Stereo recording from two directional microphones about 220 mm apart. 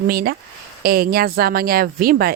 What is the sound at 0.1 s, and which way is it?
Speech, 45° right (ahead or behind).